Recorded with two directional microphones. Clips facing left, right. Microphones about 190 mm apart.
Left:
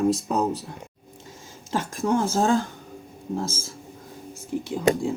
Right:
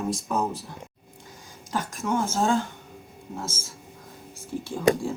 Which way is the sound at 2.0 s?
35° left (ahead or behind).